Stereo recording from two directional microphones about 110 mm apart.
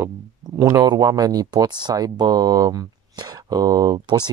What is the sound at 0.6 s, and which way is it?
Speech, 35° right (ahead or behind).